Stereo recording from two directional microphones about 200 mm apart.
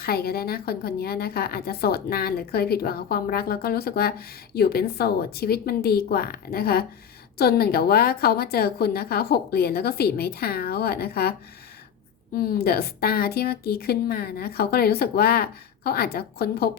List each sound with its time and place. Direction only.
0.0 s a woman's voice: 50° left (ahead or behind)
12.4 s a woman's voice: 50° left (ahead or behind)